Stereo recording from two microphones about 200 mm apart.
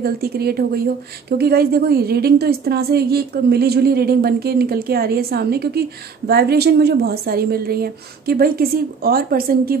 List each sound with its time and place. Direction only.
0.0 s a woman's voice: 50° right (ahead or behind)